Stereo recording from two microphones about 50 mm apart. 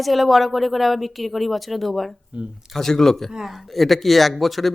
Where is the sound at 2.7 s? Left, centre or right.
Centre.